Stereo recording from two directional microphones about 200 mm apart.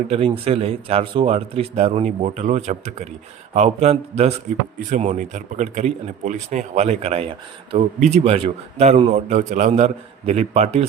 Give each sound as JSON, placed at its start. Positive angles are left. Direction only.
{"t": 0.1, "sound": "speech", "side_deg": -30}